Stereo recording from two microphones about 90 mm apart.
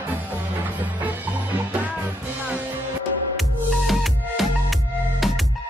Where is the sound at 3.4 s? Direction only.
Centre (ahead or behind).